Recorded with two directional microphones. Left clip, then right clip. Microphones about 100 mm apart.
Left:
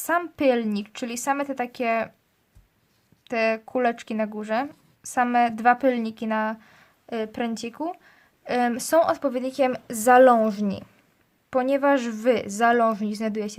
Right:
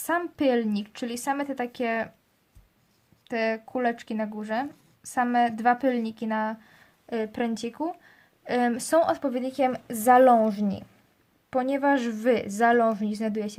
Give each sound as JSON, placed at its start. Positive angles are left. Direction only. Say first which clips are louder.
{"t": 0.0, "sound": "speech", "louder": "left 3 dB", "side_deg": 35}
{"t": 3.2, "sound": "speech", "louder": "left 4 dB", "side_deg": 45}
{"t": 7.1, "sound": "a woman's voice", "louder": "left 1 dB", "side_deg": 20}